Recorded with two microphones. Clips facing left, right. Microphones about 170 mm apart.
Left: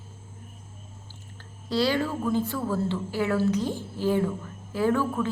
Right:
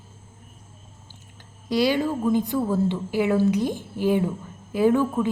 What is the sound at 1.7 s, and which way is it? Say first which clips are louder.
Speech: right 3 dB; 15° right (ahead or behind).